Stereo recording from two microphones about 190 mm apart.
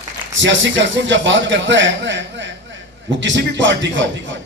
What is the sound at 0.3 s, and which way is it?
A man's voice, 75° right (ahead or behind).